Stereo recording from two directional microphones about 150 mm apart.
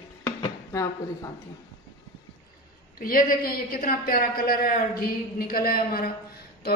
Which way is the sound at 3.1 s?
70° left (ahead or behind).